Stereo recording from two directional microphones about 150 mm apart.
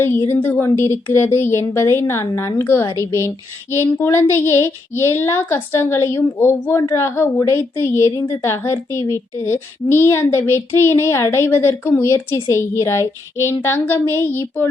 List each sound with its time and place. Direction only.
0.0 s a woman's voice: 15° left (ahead or behind)